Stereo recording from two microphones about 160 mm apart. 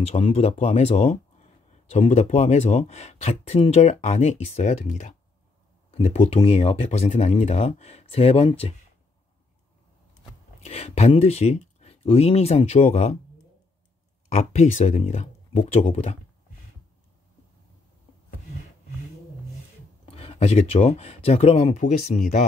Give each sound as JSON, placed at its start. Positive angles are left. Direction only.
{"t": 0.1, "sound": "speech", "side_deg": 40}
{"t": 10.6, "sound": "speech", "side_deg": 40}
{"t": 14.3, "sound": "speech", "side_deg": 45}
{"t": 20.1, "sound": "speech", "side_deg": 35}